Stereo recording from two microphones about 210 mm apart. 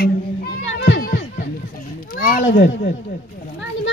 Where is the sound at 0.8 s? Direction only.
60° left (ahead or behind).